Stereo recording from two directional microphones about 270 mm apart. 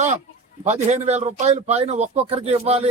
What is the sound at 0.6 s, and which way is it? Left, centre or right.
A man's voice, right.